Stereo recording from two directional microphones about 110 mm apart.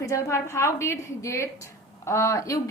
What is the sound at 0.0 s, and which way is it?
A woman's voice, 25° left (ahead or behind).